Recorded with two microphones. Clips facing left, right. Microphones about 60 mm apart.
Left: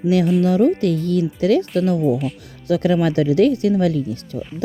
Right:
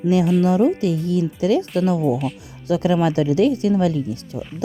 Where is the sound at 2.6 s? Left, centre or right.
Left.